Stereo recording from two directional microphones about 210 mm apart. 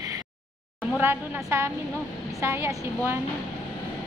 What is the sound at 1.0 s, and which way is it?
A woman's voice, 10° right (ahead or behind).